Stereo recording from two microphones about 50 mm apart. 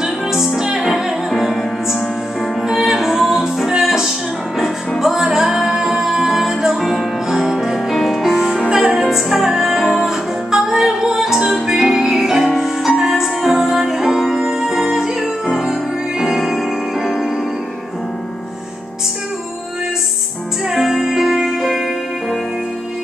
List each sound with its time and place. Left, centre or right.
0.0 s music: centre
8.6 s music: right
9.0 s music: centre
20.6 s music: centre